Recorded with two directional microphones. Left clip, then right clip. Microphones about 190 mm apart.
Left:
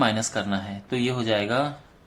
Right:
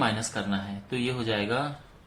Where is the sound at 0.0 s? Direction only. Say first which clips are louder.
Left 4 dB; 35° left (ahead or behind).